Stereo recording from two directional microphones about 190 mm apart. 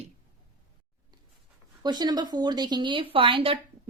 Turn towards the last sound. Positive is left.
turn(degrees=-30)  # may be behind; listen again after turning